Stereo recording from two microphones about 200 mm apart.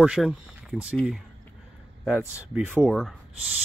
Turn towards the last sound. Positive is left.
turn(degrees=0)  # may be behind; listen again after turning